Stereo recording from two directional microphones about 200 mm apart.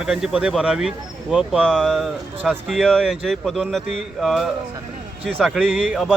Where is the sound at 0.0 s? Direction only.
5° right (ahead or behind).